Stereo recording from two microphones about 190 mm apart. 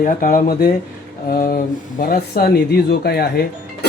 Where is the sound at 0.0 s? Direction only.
45° left (ahead or behind).